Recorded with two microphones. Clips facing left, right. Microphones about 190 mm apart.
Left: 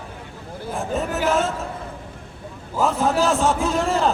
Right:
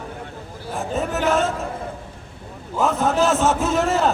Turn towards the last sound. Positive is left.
turn(degrees=0)  # may be behind; listen again after turning